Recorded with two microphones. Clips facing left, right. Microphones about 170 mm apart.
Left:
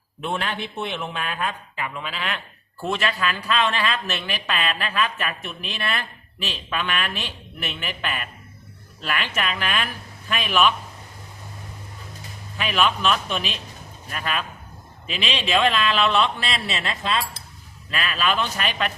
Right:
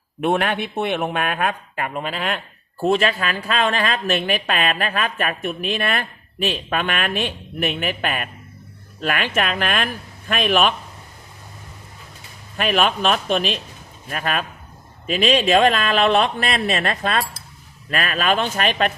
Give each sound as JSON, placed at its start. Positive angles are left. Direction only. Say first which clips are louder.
{"t": 0.2, "sound": "speech", "louder": "right 7 dB", "side_deg": -60}
{"t": 12.5, "sound": "speech", "louder": "right 3 dB", "side_deg": -50}